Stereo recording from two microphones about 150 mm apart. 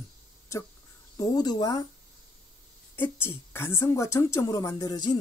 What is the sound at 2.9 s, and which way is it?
Speech, 15° left (ahead or behind).